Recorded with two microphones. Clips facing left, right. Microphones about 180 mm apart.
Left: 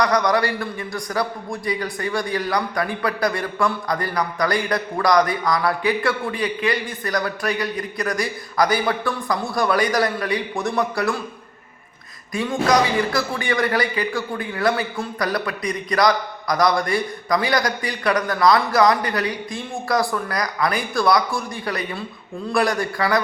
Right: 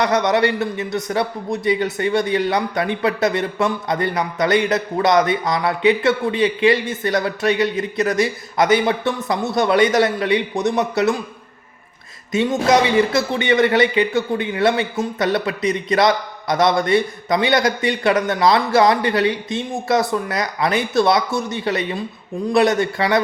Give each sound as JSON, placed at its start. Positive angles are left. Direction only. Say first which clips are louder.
{"t": 0.0, "sound": "a man's voice", "louder": "right 2 dB", "side_deg": -25}
{"t": 12.3, "sound": "a man's voice", "louder": "right 3 dB", "side_deg": -25}